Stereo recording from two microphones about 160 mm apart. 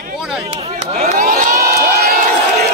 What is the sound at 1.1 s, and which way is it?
Crowd, 60° right (ahead or behind).